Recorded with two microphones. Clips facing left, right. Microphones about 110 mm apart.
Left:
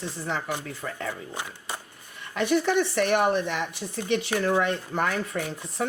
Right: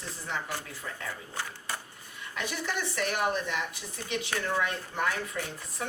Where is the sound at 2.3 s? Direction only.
60° left (ahead or behind).